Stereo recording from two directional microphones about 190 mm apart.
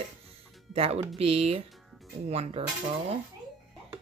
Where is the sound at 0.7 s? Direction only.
30° right (ahead or behind).